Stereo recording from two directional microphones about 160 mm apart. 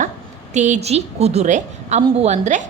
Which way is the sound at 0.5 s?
45° right (ahead or behind).